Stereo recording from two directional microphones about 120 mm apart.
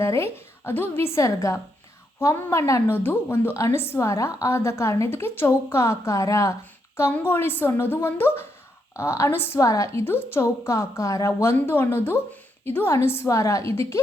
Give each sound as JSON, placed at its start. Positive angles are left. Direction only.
{"t": 0.0, "sound": "a woman's voice", "side_deg": 25}